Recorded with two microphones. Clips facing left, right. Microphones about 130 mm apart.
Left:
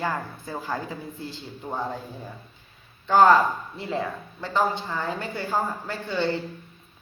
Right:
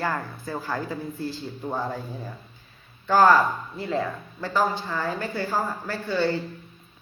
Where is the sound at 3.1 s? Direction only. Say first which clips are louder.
Left 1 dB; 25° left (ahead or behind).